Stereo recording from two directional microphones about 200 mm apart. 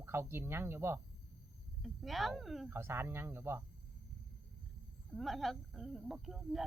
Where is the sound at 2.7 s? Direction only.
10° right (ahead or behind).